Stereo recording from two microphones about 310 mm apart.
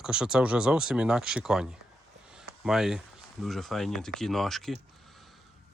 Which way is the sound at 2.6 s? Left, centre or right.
Centre.